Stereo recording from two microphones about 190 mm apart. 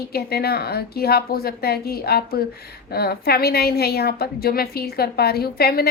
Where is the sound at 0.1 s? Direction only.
55° left (ahead or behind).